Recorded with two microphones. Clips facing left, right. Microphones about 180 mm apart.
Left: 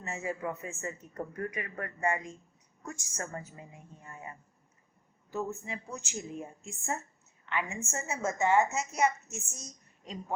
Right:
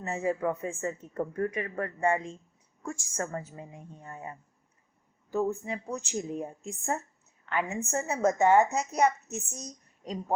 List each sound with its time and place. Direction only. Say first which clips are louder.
0.0 s a woman's voice: right 6 dB; 35° right (ahead or behind)